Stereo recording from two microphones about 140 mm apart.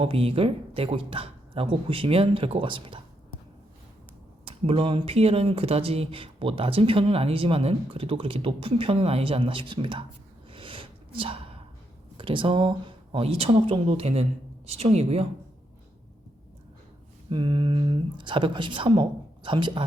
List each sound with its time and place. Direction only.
0.0 s a woman's voice: 45° right (ahead or behind)
4.4 s speech: 45° right (ahead or behind)
10.5 s a sound: 40° right (ahead or behind)
12.1 s speech: 35° right (ahead or behind)
17.2 s a woman's voice: 35° right (ahead or behind)